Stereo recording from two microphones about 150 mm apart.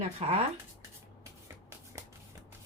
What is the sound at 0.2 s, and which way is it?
Speech, 45° right (ahead or behind).